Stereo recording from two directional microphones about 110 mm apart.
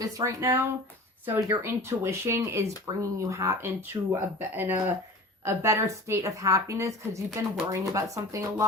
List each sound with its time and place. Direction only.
0.0 s speech: 30° right (ahead or behind)